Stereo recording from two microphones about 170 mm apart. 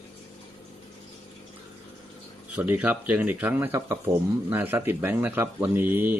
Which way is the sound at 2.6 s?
10° right (ahead or behind).